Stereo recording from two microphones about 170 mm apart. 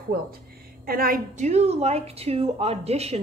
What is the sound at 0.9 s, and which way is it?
A woman's voice, 60° right (ahead or behind).